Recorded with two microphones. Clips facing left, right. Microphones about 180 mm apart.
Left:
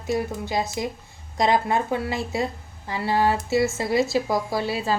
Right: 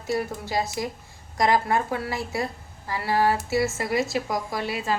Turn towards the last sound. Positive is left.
turn(degrees=30)  # may be behind; listen again after turning